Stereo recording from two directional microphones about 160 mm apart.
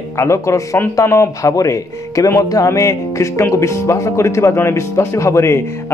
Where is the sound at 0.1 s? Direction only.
15° left (ahead or behind).